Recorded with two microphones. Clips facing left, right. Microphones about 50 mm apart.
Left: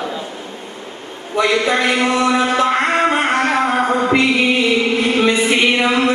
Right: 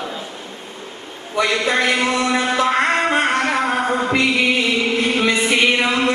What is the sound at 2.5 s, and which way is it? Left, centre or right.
Music, centre.